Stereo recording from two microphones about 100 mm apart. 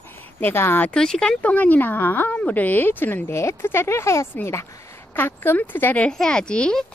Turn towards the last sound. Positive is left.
turn(degrees=10)  # may be behind; listen again after turning